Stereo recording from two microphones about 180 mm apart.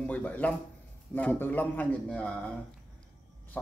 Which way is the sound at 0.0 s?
10° left (ahead or behind).